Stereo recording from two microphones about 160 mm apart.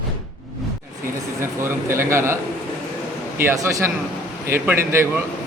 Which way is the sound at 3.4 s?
15° right (ahead or behind).